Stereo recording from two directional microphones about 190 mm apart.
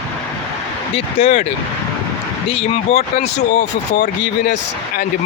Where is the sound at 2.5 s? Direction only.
35° left (ahead or behind).